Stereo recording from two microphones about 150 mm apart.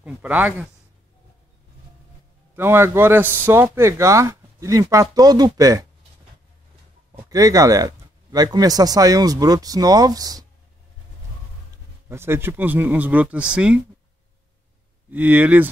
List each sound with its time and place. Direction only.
0.0 s a man's voice: 10° right (ahead or behind)
2.5 s a man's voice: 15° right (ahead or behind)
7.2 s speech: 25° right (ahead or behind)
12.1 s a man's voice: 15° right (ahead or behind)
15.0 s a man's voice: 10° right (ahead or behind)